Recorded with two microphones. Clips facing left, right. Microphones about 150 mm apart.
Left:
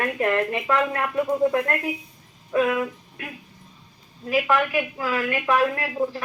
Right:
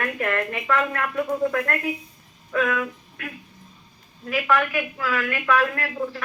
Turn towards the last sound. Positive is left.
turn(degrees=20)  # may be behind; listen again after turning